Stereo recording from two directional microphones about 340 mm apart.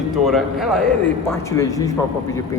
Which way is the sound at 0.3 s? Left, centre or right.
Centre.